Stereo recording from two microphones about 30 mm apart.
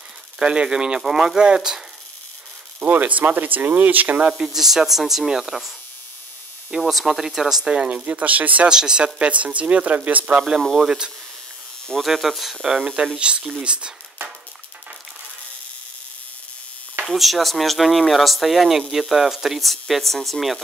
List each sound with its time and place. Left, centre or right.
0.4 s speech: right
2.8 s speech: right
4.3 s speech: centre
6.7 s speech: right
7.1 s speech: centre
7.6 s speech: right
7.9 s speech: right
8.6 s speech: right
9.0 s speech: right
10.6 s speech: centre
12.0 s speech: centre
13.2 s speech: right
17.1 s speech: centre
19.6 s speech: centre